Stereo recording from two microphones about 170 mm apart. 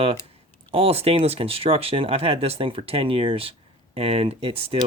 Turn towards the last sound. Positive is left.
turn(degrees=-35)  # may be behind; listen again after turning